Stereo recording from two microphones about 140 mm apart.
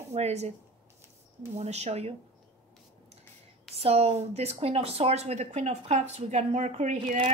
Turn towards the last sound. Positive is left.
turn(degrees=-55)  # may be behind; listen again after turning